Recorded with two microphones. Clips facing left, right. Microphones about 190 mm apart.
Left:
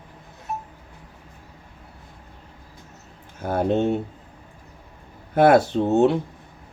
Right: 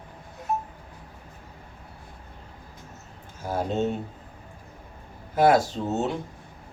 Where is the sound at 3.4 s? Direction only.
60° left (ahead or behind).